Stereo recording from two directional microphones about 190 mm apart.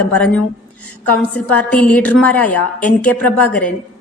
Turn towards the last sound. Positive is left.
turn(degrees=10)  # may be behind; listen again after turning